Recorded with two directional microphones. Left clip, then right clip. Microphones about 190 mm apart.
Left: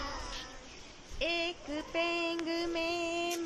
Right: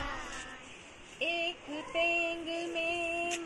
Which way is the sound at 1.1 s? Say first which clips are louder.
Even; 90° left.